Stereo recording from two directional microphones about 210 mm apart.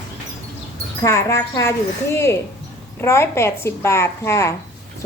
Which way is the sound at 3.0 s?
10° left (ahead or behind).